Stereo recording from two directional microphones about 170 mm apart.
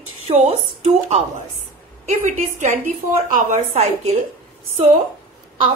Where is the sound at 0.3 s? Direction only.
40° right (ahead or behind).